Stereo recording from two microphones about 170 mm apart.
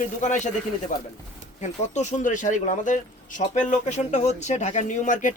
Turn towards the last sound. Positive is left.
turn(degrees=50)  # may be behind; listen again after turning